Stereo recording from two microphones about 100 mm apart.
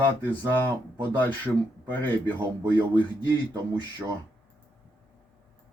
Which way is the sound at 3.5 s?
45° right (ahead or behind).